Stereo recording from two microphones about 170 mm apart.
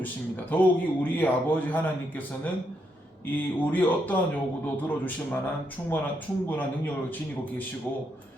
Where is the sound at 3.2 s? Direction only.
10° left (ahead or behind).